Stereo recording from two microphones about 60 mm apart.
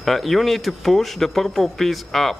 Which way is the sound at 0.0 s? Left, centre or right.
Centre.